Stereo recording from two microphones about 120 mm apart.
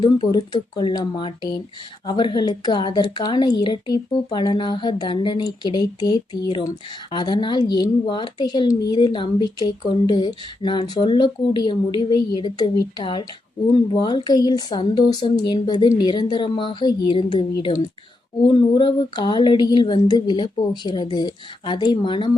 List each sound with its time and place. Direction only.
0.0 s a woman's voice: 40° left (ahead or behind)